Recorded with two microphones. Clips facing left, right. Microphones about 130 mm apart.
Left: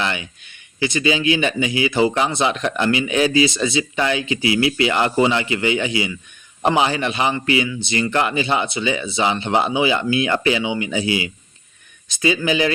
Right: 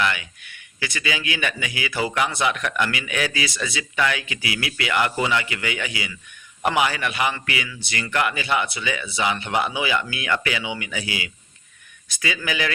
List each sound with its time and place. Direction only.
0.0 s speech: 25° left (ahead or behind)